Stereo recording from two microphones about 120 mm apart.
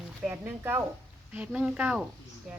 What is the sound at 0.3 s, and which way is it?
Speech, 15° right (ahead or behind).